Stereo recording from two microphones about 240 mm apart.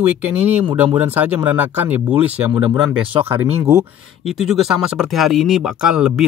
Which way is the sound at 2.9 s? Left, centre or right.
Right.